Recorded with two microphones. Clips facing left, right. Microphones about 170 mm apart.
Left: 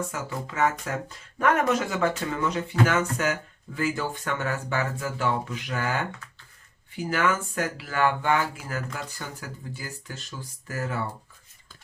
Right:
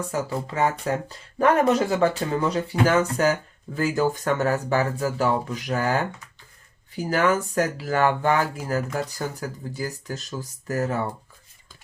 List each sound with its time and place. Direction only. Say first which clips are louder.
0.1 s speech: right 6 dB; 35° right (ahead or behind)